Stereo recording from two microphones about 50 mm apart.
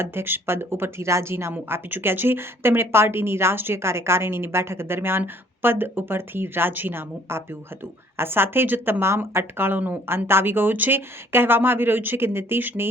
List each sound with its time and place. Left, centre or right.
0.0 s speech: right
1.9 s speech: right